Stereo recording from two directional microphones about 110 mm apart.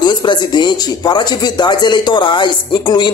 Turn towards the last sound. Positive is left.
turn(degrees=45)  # may be behind; listen again after turning